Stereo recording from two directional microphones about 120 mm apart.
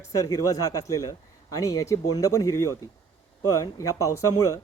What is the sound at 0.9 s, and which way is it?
Speech, 25° left (ahead or behind).